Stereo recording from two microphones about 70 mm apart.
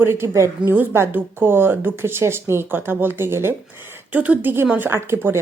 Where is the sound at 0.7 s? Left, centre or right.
Right.